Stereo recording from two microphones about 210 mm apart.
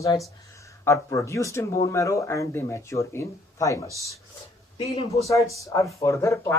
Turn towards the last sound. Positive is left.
turn(degrees=15)  # may be behind; listen again after turning